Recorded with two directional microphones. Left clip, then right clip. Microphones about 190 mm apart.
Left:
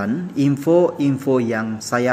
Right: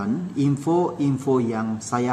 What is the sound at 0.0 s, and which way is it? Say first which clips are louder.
A woman's voice: left 4 dB; 10° left (ahead or behind).